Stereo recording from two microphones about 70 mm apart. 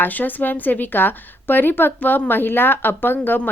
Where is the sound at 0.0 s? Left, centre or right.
Left.